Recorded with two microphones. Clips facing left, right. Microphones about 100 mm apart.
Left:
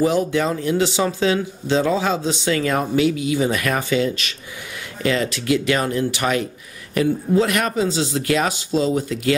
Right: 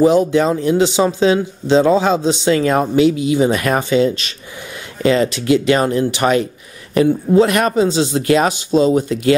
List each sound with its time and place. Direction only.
0.0 s speech: 20° right (ahead or behind)